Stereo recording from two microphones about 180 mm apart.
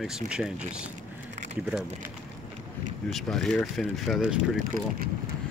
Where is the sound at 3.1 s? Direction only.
5° left (ahead or behind).